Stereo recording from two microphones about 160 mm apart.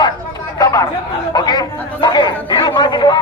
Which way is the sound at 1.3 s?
25° left (ahead or behind).